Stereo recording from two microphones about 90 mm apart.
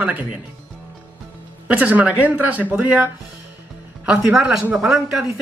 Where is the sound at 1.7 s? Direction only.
15° right (ahead or behind).